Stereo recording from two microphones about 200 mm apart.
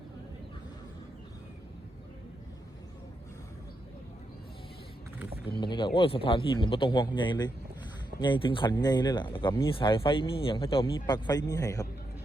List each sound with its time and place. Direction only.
5.5 s speech: 25° left (ahead or behind)